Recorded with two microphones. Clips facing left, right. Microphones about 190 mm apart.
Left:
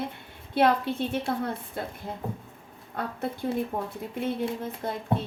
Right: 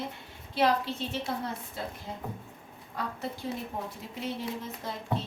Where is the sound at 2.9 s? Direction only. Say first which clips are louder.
Left 4 dB; 55° left (ahead or behind).